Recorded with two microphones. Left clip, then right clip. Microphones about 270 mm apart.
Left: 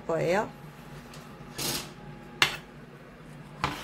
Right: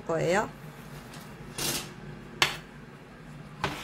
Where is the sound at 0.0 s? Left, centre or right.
Centre.